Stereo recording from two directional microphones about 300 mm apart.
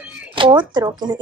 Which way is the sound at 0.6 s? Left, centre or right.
Centre.